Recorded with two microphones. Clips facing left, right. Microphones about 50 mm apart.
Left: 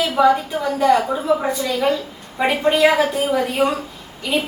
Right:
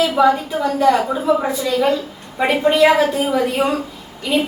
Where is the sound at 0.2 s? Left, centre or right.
Centre.